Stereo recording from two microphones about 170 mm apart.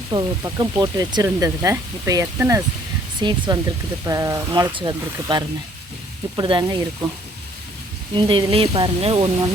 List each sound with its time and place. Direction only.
0.1 s speech: 25° right (ahead or behind)
8.1 s speech: 30° right (ahead or behind)